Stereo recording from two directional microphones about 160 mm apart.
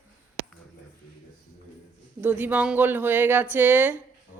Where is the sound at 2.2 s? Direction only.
10° right (ahead or behind).